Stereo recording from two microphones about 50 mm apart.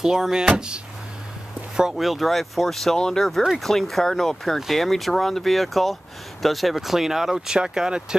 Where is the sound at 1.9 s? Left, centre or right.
Centre.